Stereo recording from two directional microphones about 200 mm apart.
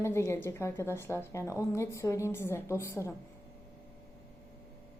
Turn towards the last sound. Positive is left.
turn(degrees=15)  # may be behind; listen again after turning